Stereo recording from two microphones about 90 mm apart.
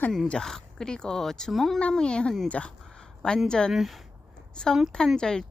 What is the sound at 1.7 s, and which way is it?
A woman's voice, 10° left (ahead or behind).